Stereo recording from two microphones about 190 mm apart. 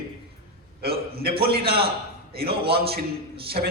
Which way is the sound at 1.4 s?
55° right (ahead or behind).